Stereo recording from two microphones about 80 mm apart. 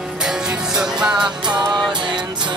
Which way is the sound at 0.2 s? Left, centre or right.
Centre.